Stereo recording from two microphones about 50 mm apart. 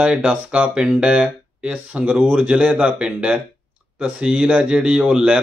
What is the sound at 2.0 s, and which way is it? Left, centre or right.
Speech, right.